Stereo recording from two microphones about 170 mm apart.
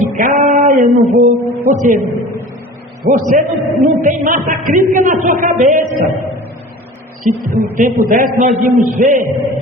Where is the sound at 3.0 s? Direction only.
45° right (ahead or behind).